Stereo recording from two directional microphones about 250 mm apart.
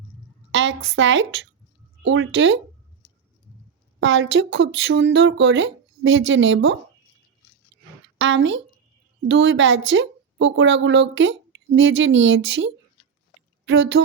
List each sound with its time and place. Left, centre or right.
0.5 s a woman's voice: right
4.0 s a woman's voice: right
8.2 s a woman's voice: right